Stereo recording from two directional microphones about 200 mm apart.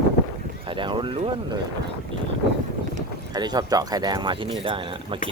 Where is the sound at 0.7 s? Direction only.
25° right (ahead or behind).